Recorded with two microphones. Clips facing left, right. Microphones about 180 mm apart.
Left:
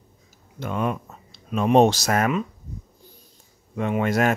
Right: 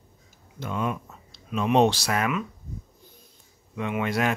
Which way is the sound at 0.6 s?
55° left (ahead or behind).